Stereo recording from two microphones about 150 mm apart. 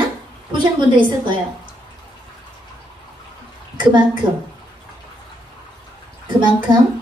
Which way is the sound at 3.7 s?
30° right (ahead or behind).